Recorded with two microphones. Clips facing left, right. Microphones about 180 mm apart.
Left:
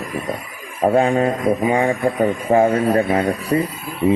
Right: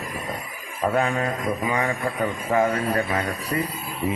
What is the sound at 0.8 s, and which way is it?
Speech, 30° left (ahead or behind).